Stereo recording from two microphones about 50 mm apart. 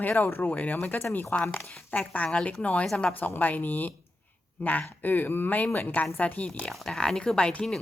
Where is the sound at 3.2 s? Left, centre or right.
Left.